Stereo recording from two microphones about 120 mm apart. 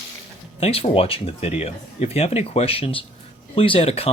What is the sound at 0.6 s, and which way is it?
Speech, 55° left (ahead or behind).